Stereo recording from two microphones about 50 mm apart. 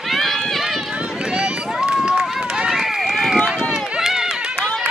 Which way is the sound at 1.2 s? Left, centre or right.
Centre.